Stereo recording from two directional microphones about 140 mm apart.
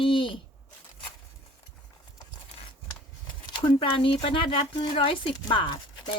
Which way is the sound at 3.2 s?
35° left (ahead or behind).